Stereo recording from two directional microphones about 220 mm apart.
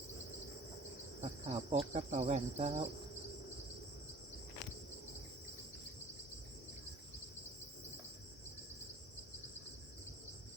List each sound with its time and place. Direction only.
1.2 s cricket: 30° right (ahead or behind)